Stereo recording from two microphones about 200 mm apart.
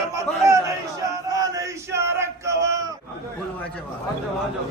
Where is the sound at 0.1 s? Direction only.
15° right (ahead or behind).